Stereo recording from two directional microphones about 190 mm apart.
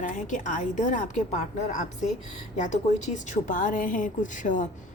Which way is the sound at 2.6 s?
40° left (ahead or behind).